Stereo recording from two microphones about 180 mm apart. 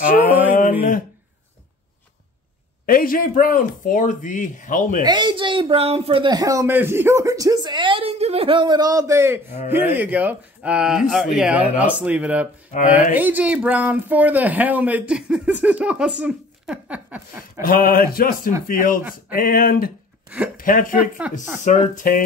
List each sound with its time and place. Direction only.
0.3 s mantra: 10° right (ahead or behind)
2.9 s speech: 50° left (ahead or behind)
5.0 s a man's voice: 25° right (ahead or behind); by 12.4 s 10° right (ahead or behind)
12.7 s speech: 40° left (ahead or behind)
13.1 s a man's voice: 10° right (ahead or behind)
17.6 s speech: 50° left (ahead or behind)
21.3 s speech: 5° right (ahead or behind)
21.6 s speech: 45° left (ahead or behind)